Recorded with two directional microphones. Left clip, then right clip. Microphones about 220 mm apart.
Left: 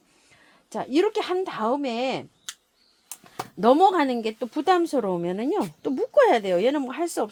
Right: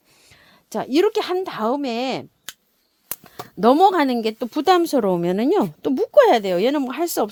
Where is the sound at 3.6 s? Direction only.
45° right (ahead or behind).